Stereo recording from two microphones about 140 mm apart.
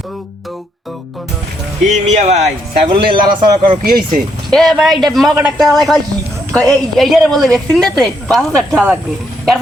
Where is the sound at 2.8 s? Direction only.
35° right (ahead or behind).